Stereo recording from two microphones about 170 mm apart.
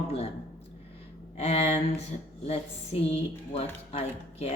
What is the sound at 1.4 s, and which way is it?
Speech, 35° left (ahead or behind).